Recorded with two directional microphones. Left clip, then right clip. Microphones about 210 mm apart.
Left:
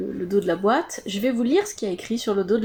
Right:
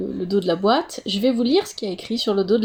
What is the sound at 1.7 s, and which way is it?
Speech, 55° right (ahead or behind).